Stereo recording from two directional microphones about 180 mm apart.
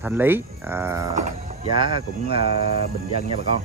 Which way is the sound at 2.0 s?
30° right (ahead or behind).